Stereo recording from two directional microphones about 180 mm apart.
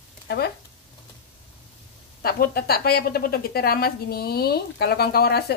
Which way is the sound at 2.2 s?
55° left (ahead or behind).